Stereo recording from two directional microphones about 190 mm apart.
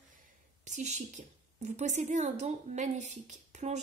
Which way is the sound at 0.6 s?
40° right (ahead or behind).